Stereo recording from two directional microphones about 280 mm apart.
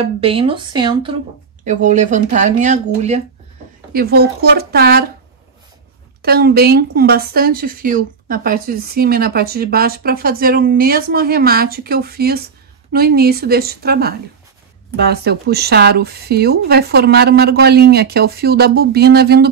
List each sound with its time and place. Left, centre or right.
0.0 s speech: right
1.6 s speech: right
3.9 s speech: right
6.2 s speech: right